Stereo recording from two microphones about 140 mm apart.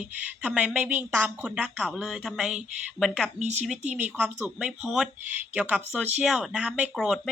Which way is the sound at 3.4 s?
50° right (ahead or behind).